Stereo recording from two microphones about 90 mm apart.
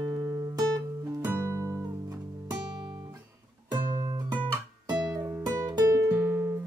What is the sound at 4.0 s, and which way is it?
Music, 40° right (ahead or behind).